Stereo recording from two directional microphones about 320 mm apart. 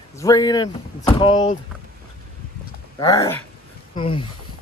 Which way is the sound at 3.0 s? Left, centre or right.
Centre.